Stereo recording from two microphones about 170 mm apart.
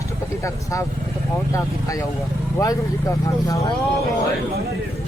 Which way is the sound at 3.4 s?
20° left (ahead or behind).